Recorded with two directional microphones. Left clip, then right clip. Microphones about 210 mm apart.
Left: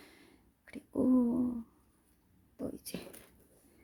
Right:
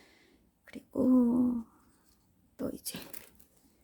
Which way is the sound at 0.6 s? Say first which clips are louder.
Right 2 dB; centre (ahead or behind).